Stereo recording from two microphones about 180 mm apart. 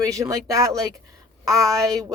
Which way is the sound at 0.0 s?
20° right (ahead or behind).